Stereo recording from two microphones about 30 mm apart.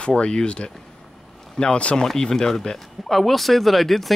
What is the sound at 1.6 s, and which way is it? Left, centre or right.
Speech, left.